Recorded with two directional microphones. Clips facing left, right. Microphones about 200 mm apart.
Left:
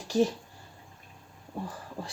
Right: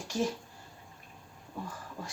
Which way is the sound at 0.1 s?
35° left (ahead or behind).